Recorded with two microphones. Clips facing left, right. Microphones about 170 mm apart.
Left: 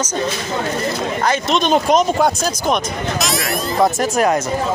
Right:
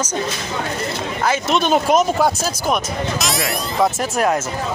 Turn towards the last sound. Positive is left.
turn(degrees=0)  # may be behind; listen again after turning